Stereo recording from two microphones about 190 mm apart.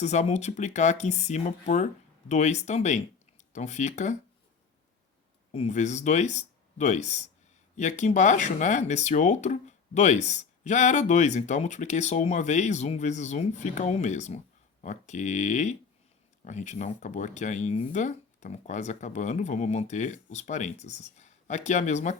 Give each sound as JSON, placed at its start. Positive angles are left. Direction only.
{"t": 0.0, "sound": "speech", "side_deg": 35}
{"t": 5.5, "sound": "speech", "side_deg": 35}